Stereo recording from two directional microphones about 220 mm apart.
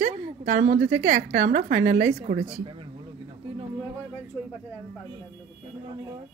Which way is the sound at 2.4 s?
15° right (ahead or behind).